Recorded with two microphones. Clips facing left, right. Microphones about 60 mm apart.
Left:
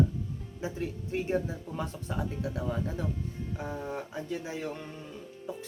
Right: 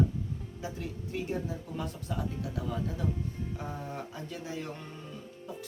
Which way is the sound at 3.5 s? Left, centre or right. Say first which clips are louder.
Left 3 dB; left.